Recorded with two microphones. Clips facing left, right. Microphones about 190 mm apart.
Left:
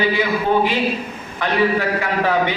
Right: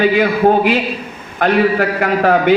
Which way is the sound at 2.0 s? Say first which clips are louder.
Right 5 dB; 50° right (ahead or behind).